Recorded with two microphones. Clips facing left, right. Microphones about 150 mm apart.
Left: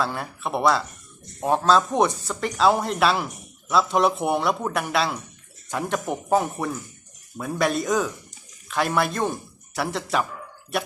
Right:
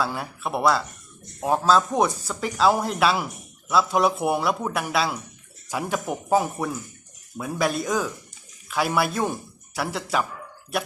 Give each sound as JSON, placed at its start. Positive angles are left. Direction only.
{"t": 0.0, "sound": "speech", "side_deg": 0}